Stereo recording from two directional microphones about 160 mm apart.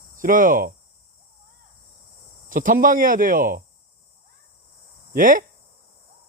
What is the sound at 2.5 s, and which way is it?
Speech, 55° right (ahead or behind).